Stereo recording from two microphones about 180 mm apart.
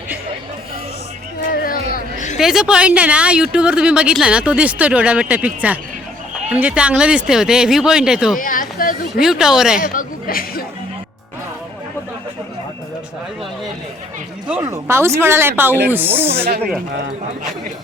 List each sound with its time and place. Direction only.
1.5 s a sound: 50° left (ahead or behind)
2.4 s speech: 5° right (ahead or behind)
8.4 s speech: 50° left (ahead or behind)
9.2 s speech: 5° right (ahead or behind)
9.8 s speech: 50° left (ahead or behind)
14.6 s a woman's voice: 15° right (ahead or behind)